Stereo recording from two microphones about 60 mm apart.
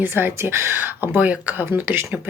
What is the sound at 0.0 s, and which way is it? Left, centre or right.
Speech, right.